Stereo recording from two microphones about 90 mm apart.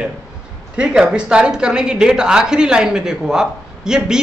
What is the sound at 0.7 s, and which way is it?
A woman's voice, 10° right (ahead or behind).